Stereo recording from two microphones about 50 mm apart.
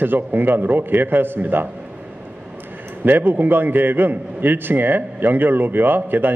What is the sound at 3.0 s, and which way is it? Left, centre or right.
A man's voice, right.